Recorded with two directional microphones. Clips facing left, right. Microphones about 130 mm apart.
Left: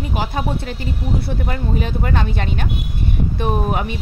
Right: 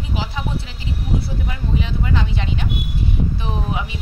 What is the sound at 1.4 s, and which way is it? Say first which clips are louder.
Speech: left 3 dB; 50° left (ahead or behind).